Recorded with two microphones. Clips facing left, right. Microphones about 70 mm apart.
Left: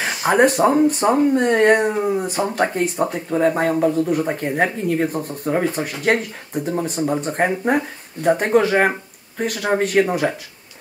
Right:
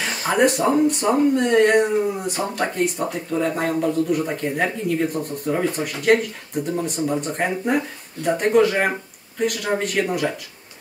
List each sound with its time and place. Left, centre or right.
0.0 s speech: left